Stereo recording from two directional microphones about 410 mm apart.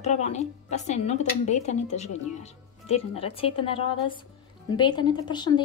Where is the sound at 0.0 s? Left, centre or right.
Centre.